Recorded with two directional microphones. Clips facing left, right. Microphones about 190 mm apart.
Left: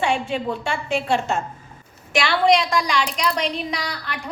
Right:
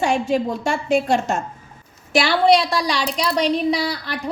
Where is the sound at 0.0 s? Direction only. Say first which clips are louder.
Right 3 dB; 40° right (ahead or behind).